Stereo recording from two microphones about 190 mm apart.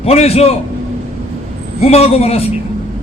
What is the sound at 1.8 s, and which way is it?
Speech, 35° left (ahead or behind).